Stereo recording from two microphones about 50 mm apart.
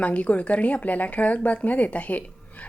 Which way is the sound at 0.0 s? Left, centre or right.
Left.